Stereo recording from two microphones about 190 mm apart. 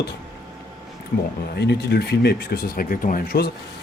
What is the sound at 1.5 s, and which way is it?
Speech, 60° left (ahead or behind).